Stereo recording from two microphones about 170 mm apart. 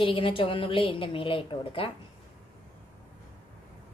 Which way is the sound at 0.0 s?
30° left (ahead or behind).